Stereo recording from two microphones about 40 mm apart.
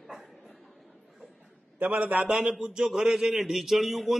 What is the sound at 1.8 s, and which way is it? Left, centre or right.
Speech, right.